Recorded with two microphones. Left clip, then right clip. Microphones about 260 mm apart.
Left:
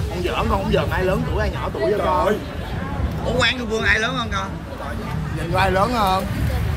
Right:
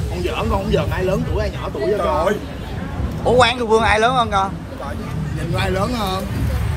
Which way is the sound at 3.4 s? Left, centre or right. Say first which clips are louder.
Right 3 dB; centre.